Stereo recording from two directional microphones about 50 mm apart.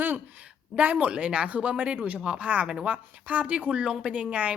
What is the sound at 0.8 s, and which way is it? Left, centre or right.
Speech, right.